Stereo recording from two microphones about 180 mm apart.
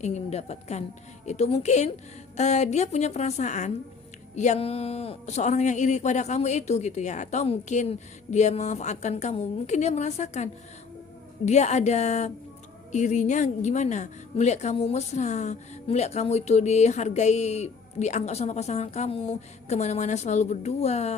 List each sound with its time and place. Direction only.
0.0 s a woman's voice: 35° left (ahead or behind)